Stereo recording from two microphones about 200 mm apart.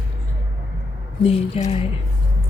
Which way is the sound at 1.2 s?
30° left (ahead or behind).